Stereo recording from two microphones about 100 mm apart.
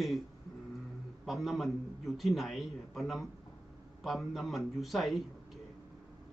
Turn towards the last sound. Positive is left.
turn(degrees=0)  # may be behind; listen again after turning